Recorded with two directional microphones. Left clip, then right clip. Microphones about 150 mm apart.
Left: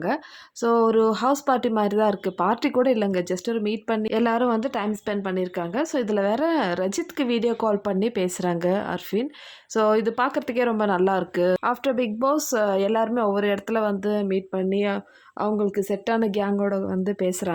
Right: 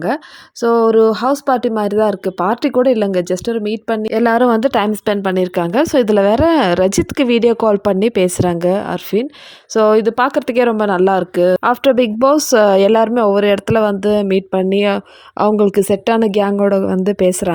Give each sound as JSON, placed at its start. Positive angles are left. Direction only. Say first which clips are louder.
{"t": 0.6, "sound": "speech", "louder": "right 8 dB", "side_deg": -45}